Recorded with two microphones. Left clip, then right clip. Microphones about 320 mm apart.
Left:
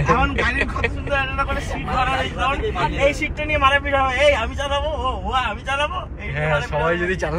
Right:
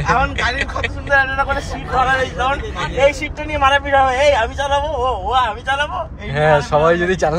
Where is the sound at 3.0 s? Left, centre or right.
Right.